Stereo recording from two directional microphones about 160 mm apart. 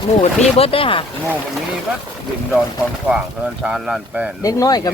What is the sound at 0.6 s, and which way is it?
Speech, 35° left (ahead or behind).